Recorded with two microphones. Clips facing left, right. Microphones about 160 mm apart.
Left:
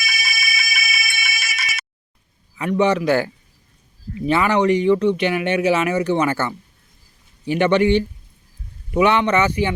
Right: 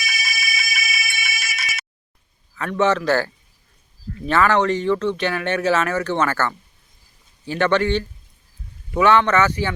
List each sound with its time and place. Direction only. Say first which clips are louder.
0.0 s ringtone: left 1 dB; 65° left (ahead or behind)
2.6 s speech: left 2 dB; 15° left (ahead or behind)